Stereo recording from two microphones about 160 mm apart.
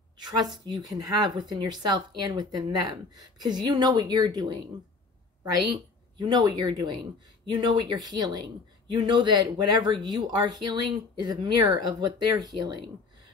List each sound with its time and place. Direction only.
0.2 s speech: 25° right (ahead or behind)
6.1 s speech: 25° right (ahead or behind)